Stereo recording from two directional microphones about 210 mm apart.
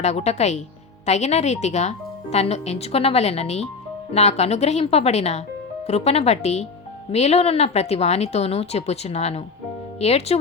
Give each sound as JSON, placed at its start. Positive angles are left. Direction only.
{"t": 0.0, "sound": "speech", "side_deg": 30}